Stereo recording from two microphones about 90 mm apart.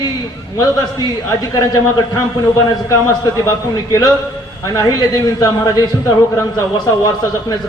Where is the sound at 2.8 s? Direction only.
35° left (ahead or behind).